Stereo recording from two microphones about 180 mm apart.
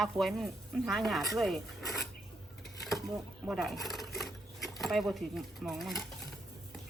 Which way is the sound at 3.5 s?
Centre (ahead or behind).